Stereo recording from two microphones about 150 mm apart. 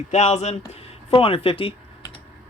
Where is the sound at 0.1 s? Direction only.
45° left (ahead or behind).